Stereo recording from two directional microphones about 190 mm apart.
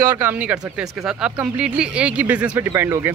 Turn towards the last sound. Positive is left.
turn(degrees=-15)  # may be behind; listen again after turning